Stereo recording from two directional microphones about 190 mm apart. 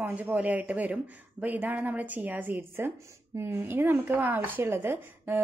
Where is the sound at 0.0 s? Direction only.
10° right (ahead or behind).